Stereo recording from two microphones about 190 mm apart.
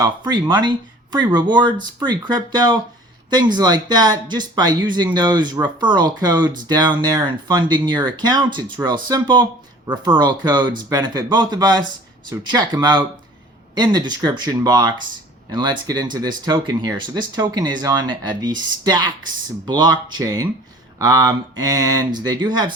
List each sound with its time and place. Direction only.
0.0 s speech: 20° right (ahead or behind)